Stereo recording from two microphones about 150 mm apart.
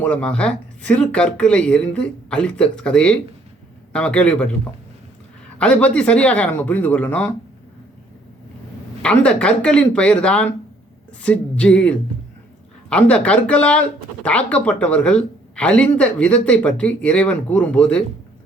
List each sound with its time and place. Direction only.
0.0 s speech: 10° left (ahead or behind)
5.5 s speech: 10° left (ahead or behind)
9.0 s speech: 5° left (ahead or behind)